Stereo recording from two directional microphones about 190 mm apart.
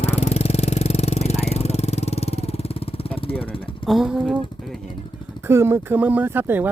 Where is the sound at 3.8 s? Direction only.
Centre (ahead or behind).